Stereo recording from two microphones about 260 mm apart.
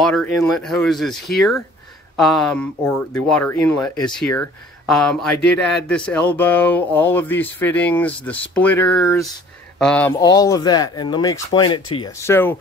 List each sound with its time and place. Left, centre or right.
0.0 s speech: centre